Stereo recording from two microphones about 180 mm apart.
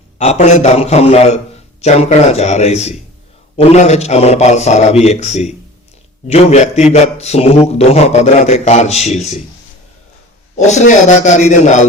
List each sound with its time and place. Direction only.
0.2 s a man's voice: 35° left (ahead or behind)
10.6 s a man's voice: 40° left (ahead or behind)